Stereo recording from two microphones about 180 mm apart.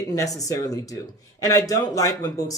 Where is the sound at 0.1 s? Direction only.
20° left (ahead or behind).